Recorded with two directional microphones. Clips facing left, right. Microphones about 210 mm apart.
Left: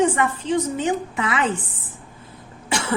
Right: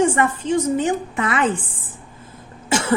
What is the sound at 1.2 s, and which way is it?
Speech, 50° right (ahead or behind).